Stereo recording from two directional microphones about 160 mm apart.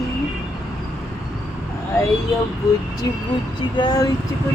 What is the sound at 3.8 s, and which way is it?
Speech, 25° left (ahead or behind).